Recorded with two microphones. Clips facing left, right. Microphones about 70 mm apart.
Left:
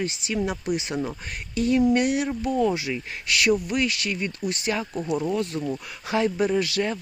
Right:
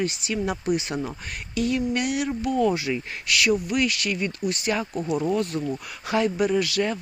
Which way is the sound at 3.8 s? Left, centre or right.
Left.